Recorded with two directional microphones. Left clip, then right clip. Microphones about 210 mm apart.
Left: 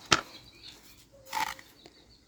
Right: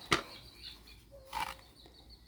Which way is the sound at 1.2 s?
40° left (ahead or behind).